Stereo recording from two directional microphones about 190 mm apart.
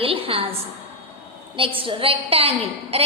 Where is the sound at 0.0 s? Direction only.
30° right (ahead or behind).